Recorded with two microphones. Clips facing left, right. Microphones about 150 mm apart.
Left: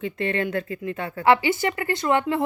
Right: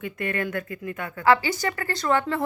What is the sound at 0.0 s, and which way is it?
A woman's voice, 25° left (ahead or behind).